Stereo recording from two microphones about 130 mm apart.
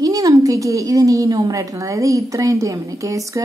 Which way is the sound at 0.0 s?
30° right (ahead or behind).